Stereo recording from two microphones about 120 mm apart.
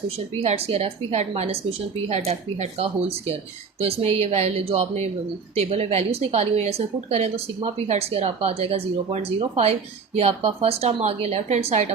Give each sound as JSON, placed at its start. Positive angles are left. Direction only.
{"t": 0.4, "sound": "a woman's voice", "side_deg": -55}
{"t": 2.0, "sound": "a woman's voice", "side_deg": -65}